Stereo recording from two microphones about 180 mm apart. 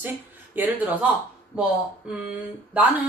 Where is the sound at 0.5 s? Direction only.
10° right (ahead or behind).